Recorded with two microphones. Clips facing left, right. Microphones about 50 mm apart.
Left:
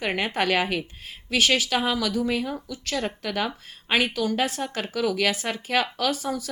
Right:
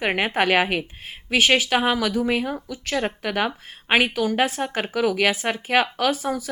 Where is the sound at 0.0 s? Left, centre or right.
Right.